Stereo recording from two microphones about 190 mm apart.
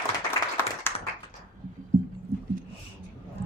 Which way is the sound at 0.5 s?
10° left (ahead or behind).